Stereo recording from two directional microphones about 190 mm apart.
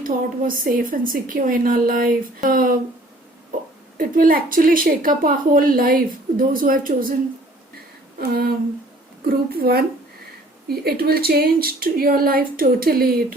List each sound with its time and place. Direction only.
0.0 s a woman's voice: 45° right (ahead or behind)
3.9 s a woman's voice: 50° right (ahead or behind)
8.2 s a woman's voice: 55° right (ahead or behind)